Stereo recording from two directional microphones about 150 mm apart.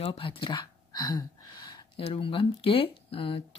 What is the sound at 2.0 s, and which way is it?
Speech, 35° left (ahead or behind).